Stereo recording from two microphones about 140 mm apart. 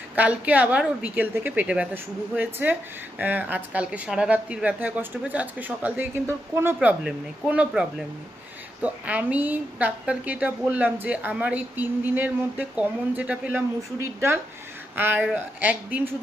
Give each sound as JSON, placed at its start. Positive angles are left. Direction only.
{"t": 0.2, "sound": "a woman's voice", "side_deg": -10}
{"t": 6.7, "sound": "a woman's voice", "side_deg": -5}